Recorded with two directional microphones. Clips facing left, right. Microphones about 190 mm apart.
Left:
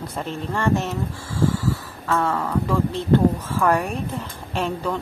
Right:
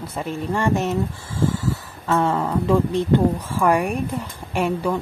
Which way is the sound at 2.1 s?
20° right (ahead or behind).